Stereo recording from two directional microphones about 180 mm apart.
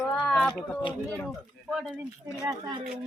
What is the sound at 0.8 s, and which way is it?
Speech, 25° left (ahead or behind).